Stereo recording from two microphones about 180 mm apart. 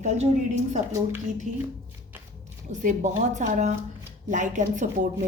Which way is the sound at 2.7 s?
40° right (ahead or behind).